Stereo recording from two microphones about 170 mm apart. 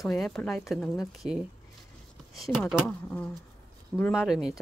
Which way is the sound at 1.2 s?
40° right (ahead or behind).